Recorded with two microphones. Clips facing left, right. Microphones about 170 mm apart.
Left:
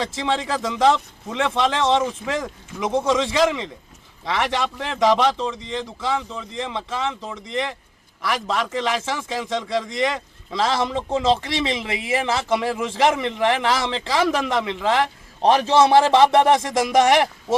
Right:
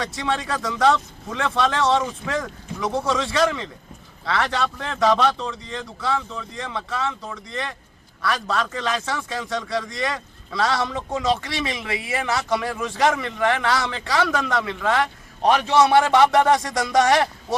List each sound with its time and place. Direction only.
0.0 s a man's voice: 25° left (ahead or behind)